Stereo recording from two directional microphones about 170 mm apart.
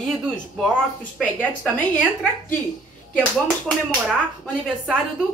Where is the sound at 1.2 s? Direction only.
10° left (ahead or behind).